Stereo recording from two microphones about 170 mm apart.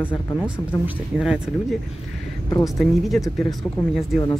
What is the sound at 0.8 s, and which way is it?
Speech, 5° right (ahead or behind).